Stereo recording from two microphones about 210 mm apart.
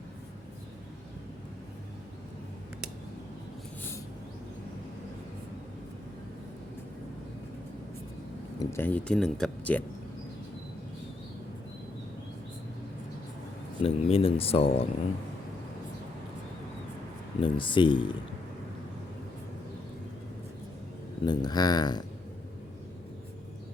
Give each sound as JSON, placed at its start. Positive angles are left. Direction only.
{"t": 8.5, "sound": "speech", "side_deg": 10}
{"t": 13.8, "sound": "speech", "side_deg": 25}
{"t": 17.4, "sound": "speech", "side_deg": 25}
{"t": 21.2, "sound": "speech", "side_deg": 20}